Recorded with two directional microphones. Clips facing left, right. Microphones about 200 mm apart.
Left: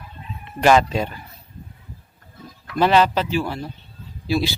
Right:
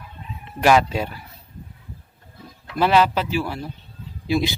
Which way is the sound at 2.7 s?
5° right (ahead or behind).